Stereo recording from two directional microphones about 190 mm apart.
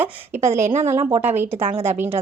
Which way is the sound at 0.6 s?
40° right (ahead or behind).